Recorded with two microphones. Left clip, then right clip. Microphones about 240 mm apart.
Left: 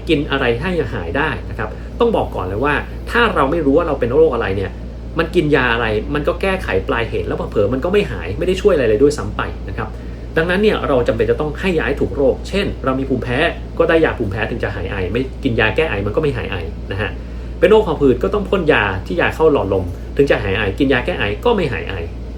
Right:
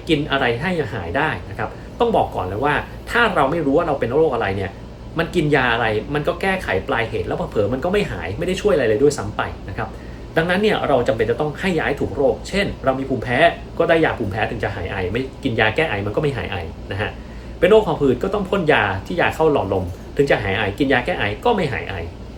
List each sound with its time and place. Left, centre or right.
0.1 s speech: centre